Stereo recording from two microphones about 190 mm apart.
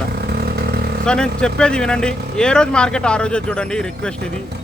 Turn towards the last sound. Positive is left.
turn(degrees=5)  # may be behind; listen again after turning